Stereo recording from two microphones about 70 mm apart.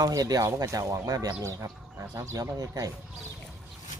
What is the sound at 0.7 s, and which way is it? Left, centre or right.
Speech, right.